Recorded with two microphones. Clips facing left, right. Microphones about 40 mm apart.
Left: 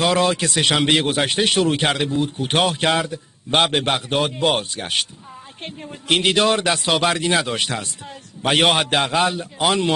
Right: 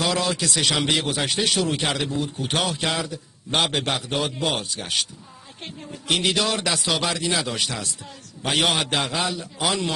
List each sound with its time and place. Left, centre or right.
0.0 s a man's voice: left
5.6 s a woman's voice: left
6.0 s a man's voice: left